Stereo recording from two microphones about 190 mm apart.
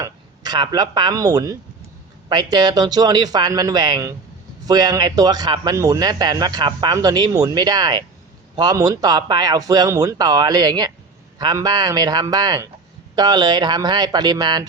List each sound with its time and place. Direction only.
0.0 s a man's voice: 20° right (ahead or behind)